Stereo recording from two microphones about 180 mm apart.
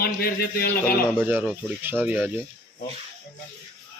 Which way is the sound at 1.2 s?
10° right (ahead or behind).